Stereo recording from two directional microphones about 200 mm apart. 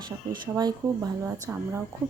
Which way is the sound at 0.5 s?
20° right (ahead or behind).